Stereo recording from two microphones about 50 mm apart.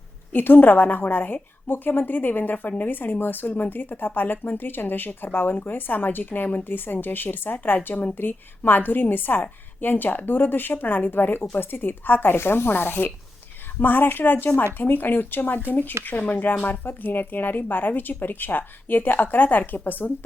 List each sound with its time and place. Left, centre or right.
0.3 s a woman's voice: left